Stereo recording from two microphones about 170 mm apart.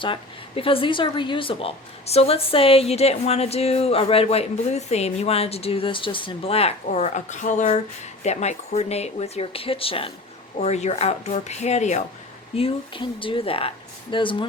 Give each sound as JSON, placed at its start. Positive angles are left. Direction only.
{"t": 0.0, "sound": "speech", "side_deg": 30}
{"t": 12.5, "sound": "speech", "side_deg": 30}